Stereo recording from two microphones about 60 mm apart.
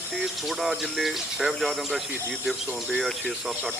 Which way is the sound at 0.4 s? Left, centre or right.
Centre.